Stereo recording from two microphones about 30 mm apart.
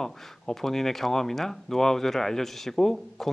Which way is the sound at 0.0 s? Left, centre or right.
Centre.